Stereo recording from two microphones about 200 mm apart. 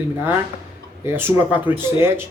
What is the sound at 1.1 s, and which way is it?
Speech, 10° right (ahead or behind).